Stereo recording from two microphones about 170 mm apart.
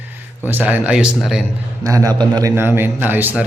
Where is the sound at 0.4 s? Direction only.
10° right (ahead or behind).